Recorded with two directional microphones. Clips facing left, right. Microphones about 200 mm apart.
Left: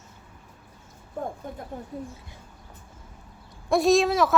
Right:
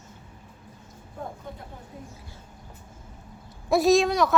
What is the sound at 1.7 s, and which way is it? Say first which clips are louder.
Speech: left 8 dB; 45° left (ahead or behind).